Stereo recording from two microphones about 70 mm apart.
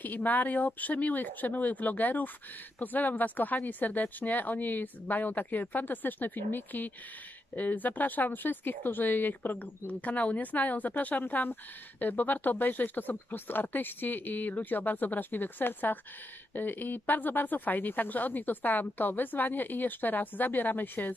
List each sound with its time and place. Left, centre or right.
0.0 s speech: left